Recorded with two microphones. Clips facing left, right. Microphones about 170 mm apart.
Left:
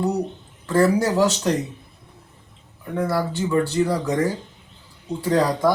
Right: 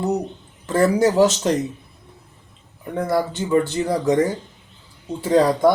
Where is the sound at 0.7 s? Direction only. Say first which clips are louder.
Right 1 dB; 15° right (ahead or behind).